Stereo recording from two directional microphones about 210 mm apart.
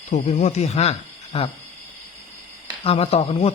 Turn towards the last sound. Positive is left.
turn(degrees=30)  # may be behind; listen again after turning